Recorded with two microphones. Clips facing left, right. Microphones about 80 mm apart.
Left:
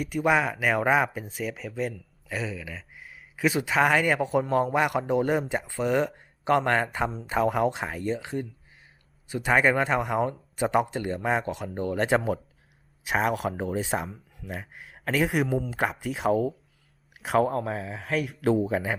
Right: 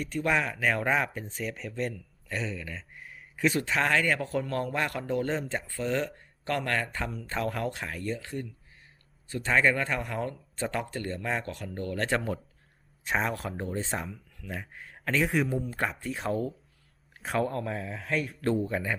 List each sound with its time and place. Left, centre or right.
0.0 s speech: centre